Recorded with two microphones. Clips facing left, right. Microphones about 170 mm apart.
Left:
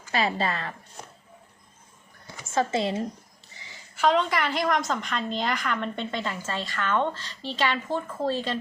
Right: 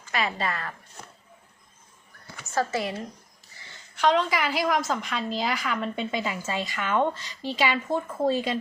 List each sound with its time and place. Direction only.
0.1 s a woman's voice: 30° left (ahead or behind)
2.6 s a woman's voice: 25° left (ahead or behind)
3.9 s a woman's voice: centre (ahead or behind)